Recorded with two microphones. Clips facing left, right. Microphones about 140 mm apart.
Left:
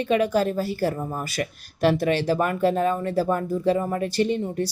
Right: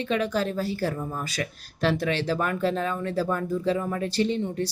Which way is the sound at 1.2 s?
10° left (ahead or behind).